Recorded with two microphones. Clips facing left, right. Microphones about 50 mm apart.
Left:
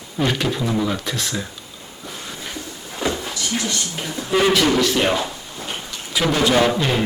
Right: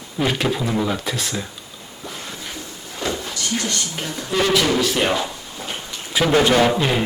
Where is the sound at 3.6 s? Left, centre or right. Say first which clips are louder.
Even; right.